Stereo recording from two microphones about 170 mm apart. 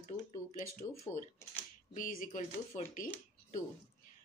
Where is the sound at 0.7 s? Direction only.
15° left (ahead or behind).